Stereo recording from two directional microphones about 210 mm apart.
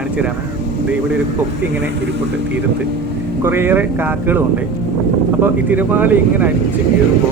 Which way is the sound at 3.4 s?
10° right (ahead or behind).